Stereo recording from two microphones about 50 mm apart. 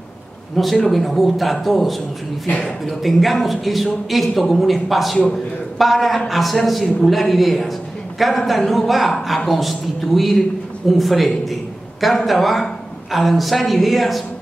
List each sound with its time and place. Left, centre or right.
0.6 s speech: centre